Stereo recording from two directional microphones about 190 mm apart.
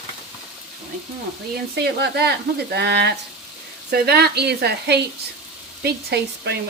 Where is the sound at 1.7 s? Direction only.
60° right (ahead or behind).